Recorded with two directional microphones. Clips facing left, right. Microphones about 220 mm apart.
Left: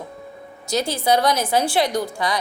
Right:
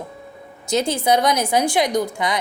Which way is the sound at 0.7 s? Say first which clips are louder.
Right 2 dB; 20° right (ahead or behind).